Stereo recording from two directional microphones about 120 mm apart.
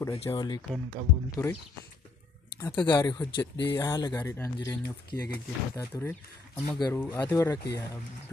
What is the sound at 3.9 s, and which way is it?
Speech, 35° left (ahead or behind).